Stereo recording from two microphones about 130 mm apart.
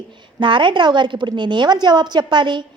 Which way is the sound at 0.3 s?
40° right (ahead or behind).